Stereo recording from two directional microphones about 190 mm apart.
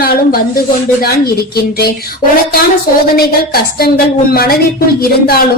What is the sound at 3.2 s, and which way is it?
A woman's voice, 55° left (ahead or behind).